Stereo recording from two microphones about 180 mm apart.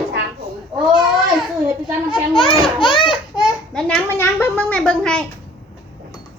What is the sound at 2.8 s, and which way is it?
Baby cry, 30° left (ahead or behind).